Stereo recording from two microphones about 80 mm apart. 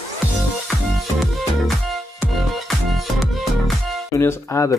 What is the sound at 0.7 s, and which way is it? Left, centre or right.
Music, centre.